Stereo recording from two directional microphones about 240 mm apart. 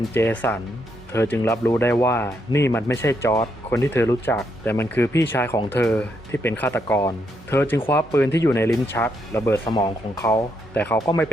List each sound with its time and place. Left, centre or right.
0.1 s speech: centre